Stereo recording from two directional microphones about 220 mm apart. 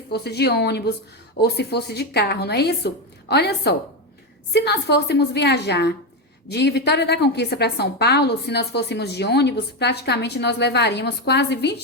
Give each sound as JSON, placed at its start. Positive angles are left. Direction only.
{"t": 0.1, "sound": "a woman's voice", "side_deg": 50}